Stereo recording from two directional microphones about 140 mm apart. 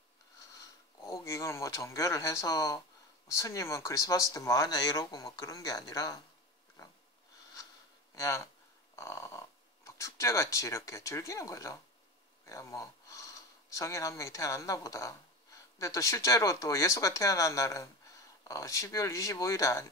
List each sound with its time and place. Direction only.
0.6 s speech: 25° left (ahead or behind)
8.1 s a sound: 20° left (ahead or behind)
8.9 s dog: 20° left (ahead or behind)
9.8 s speech: 20° left (ahead or behind)